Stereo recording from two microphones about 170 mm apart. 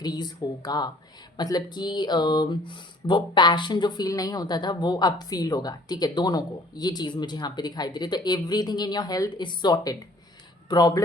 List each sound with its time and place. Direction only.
0.0 s speech: 25° left (ahead or behind)